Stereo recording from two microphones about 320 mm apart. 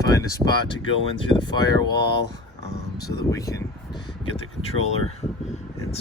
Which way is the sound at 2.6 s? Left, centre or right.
Left.